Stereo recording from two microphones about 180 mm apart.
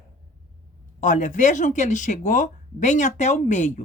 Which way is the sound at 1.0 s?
45° left (ahead or behind).